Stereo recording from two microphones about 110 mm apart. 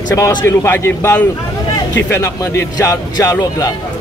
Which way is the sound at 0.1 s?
25° left (ahead or behind).